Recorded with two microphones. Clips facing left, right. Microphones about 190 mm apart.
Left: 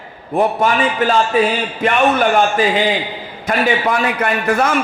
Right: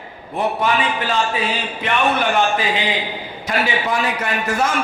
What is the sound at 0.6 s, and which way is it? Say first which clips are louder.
Speech: left 4 dB; 45° left (ahead or behind).